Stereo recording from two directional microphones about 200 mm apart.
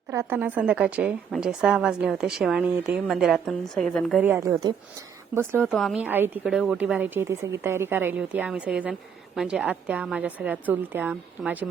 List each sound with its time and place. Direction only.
0.1 s a woman's voice: 10° right (ahead or behind)
4.2 s a woman's voice: 10° right (ahead or behind)